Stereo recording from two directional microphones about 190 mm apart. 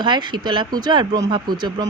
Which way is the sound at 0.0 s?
25° right (ahead or behind).